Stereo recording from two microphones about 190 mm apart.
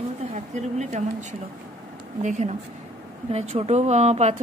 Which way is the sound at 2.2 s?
35° right (ahead or behind).